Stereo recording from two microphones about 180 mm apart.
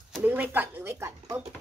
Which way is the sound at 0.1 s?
10° right (ahead or behind).